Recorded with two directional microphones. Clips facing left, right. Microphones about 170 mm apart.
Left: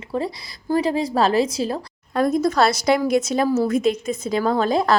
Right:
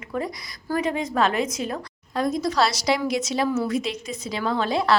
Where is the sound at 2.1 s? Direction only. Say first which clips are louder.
Left 5 dB; 55° left (ahead or behind).